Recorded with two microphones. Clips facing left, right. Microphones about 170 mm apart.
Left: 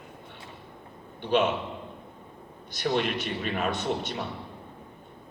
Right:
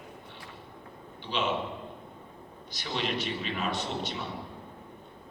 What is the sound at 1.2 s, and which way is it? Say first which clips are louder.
Speech: left 9 dB; 55° left (ahead or behind).